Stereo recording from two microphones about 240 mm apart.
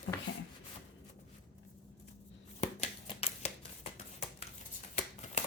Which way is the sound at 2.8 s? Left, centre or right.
Left.